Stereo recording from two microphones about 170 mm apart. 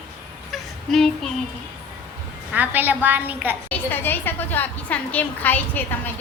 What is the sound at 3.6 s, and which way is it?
A woman's voice, 10° left (ahead or behind).